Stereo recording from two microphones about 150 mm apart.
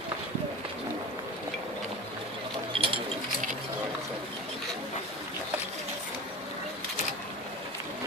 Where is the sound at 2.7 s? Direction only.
35° right (ahead or behind).